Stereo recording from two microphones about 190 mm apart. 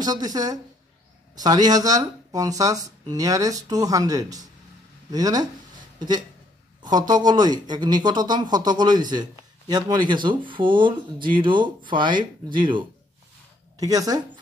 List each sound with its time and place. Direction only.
0.0 s speech: 20° right (ahead or behind)
5.9 s a sound: 20° right (ahead or behind)
6.8 s speech: 20° right (ahead or behind)